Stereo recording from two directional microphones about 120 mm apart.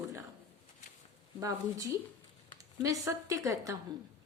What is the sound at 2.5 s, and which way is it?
Speech, 30° right (ahead or behind).